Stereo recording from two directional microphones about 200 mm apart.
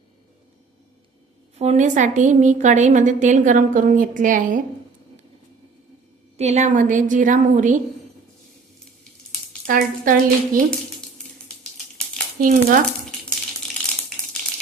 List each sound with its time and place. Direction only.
1.5 s a woman's voice: 35° right (ahead or behind)
6.3 s a woman's voice: 35° right (ahead or behind)
9.6 s a woman's voice: 45° right (ahead or behind)
12.4 s a woman's voice: 45° right (ahead or behind)